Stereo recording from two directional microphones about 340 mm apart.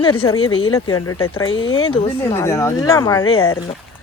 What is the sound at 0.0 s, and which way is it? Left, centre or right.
Speech, centre.